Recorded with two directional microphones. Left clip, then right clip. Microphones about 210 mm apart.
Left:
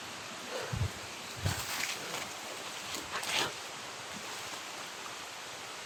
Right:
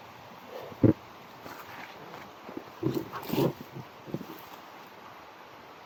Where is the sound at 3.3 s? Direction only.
20° right (ahead or behind).